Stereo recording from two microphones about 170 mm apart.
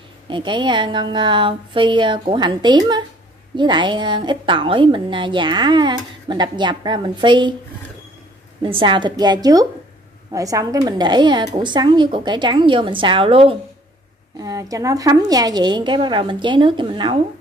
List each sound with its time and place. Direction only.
0.3 s a woman's voice: 30° right (ahead or behind)
8.6 s a woman's voice: 30° right (ahead or behind)
14.4 s a woman's voice: 20° right (ahead or behind)